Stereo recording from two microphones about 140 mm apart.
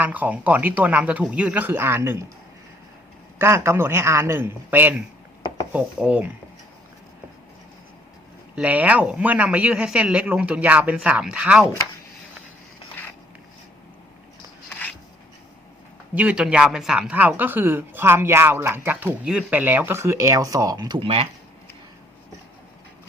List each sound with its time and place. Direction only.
0.0 s speech: 10° right (ahead or behind)
3.3 s speech: 20° right (ahead or behind)
8.5 s speech: 10° right (ahead or behind)
14.7 s a sound: 10° left (ahead or behind)
16.1 s speech: 10° right (ahead or behind); by 21.2 s 40° right (ahead or behind)